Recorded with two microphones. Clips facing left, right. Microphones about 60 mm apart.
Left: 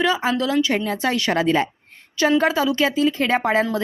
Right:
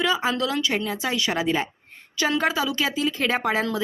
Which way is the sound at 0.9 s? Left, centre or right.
Left.